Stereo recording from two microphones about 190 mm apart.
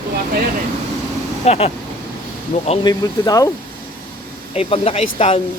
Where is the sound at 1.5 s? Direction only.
30° left (ahead or behind).